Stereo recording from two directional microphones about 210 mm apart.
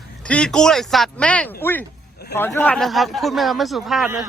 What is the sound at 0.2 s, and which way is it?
A man's voice, 5° left (ahead or behind).